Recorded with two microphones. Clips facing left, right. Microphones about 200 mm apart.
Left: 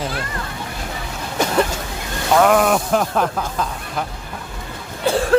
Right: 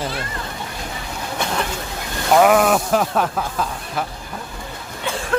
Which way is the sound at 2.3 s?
5° right (ahead or behind).